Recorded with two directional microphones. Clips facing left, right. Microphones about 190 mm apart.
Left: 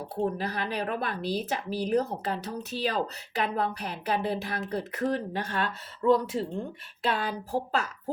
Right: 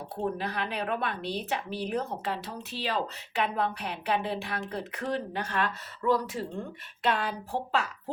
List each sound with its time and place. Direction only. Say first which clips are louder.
0.3 s speech: left 1 dB; 40° left (ahead or behind)
7.0 s speech: even; 35° left (ahead or behind)